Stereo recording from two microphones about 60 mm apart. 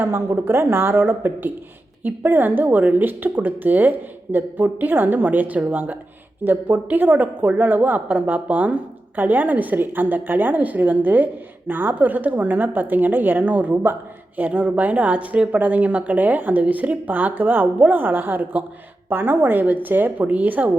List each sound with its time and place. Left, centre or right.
0.0 s a woman's voice: right